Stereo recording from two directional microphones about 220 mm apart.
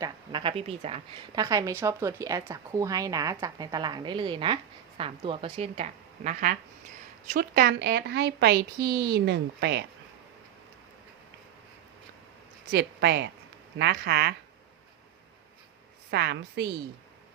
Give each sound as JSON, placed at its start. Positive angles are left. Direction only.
{"t": 0.0, "sound": "a woman's voice", "side_deg": -20}
{"t": 12.7, "sound": "a woman's voice", "side_deg": -50}
{"t": 16.1, "sound": "a woman's voice", "side_deg": -50}